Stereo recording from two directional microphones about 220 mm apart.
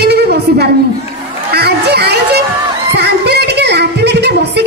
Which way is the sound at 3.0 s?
50° right (ahead or behind).